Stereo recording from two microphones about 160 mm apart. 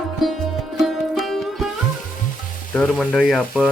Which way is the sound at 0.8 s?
Centre (ahead or behind).